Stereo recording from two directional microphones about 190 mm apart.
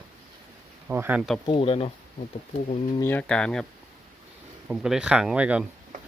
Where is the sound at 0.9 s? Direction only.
10° right (ahead or behind).